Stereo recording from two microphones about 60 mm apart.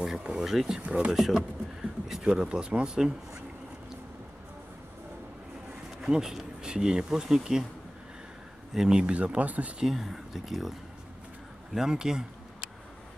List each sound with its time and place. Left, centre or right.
0.0 s speech: centre
5.9 s speech: centre
8.7 s speech: centre
9.8 s speech: centre
11.7 s speech: centre